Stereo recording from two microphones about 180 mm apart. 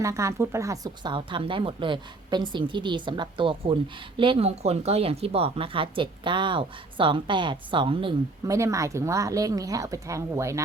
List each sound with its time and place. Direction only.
0.0 s speech: 15° right (ahead or behind)
8.5 s a woman's voice: 15° right (ahead or behind)